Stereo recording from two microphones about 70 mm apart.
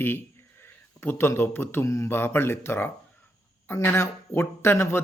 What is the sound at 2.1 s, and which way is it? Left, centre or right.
Speech, left.